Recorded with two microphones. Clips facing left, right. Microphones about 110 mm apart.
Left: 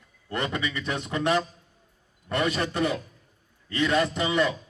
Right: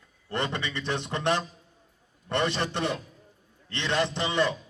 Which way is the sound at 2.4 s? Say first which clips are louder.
Left 1 dB; 30° right (ahead or behind).